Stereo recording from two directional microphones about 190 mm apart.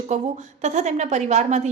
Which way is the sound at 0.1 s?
40° right (ahead or behind).